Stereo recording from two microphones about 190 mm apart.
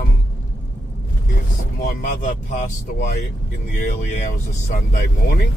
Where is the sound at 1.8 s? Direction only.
40° left (ahead or behind).